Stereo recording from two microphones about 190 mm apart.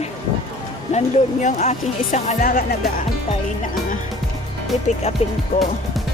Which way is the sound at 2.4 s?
55° left (ahead or behind).